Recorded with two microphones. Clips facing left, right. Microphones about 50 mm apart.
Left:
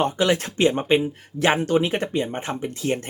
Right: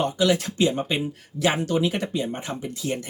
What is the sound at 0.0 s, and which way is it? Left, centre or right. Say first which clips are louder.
Speech: left 1 dB; left.